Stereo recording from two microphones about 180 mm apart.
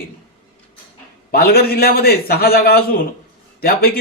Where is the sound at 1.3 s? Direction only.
60° left (ahead or behind).